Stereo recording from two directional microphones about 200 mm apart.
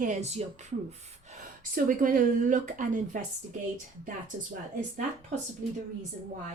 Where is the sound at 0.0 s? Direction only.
35° right (ahead or behind).